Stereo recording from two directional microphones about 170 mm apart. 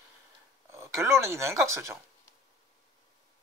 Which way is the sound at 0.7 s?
15° right (ahead or behind).